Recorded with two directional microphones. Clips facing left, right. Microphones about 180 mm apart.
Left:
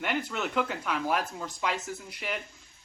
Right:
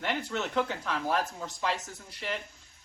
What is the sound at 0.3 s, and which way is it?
Speech, 25° right (ahead or behind).